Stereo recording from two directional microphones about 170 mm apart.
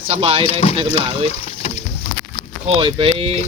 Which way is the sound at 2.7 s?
30° right (ahead or behind).